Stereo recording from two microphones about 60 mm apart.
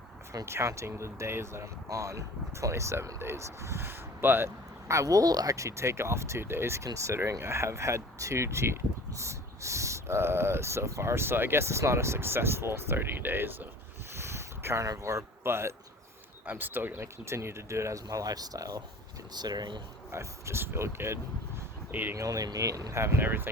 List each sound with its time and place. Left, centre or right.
0.4 s speech: right
4.9 s speech: right
6.8 s speech: right
7.3 s speech: right
14.2 s boat: right
14.8 s speech: right
15.4 s speech: right
16.5 s speech: right
17.0 s speech: right
20.1 s speech: right
22.1 s speech: right
23.2 s speech: right